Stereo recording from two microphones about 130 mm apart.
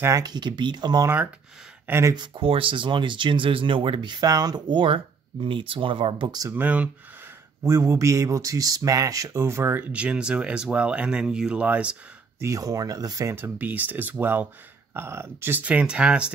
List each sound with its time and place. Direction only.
0.0 s speech: 30° right (ahead or behind)
1.0 s speech: 10° right (ahead or behind)
2.1 s speech: 40° right (ahead or behind)
6.5 s speech: 10° right (ahead or behind)
12.4 s speech: 25° right (ahead or behind); by 16.3 s 10° right (ahead or behind)